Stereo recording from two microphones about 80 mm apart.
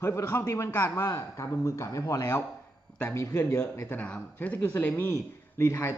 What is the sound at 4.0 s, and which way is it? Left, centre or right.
Speech, centre.